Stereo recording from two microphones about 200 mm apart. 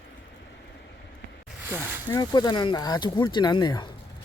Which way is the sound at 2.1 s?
20° left (ahead or behind).